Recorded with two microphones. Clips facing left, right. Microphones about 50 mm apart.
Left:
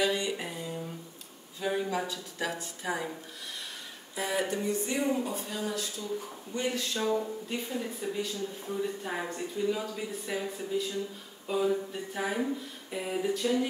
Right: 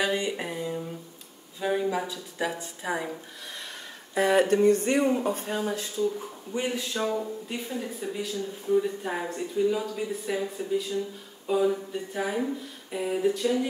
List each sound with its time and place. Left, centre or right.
0.0 s a sound: right
1.6 s a woman's voice: centre
4.1 s speech: right
5.2 s speech: right
6.5 s speech: centre
7.2 s speech: centre